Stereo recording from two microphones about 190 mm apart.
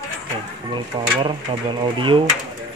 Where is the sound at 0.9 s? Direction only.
25° right (ahead or behind).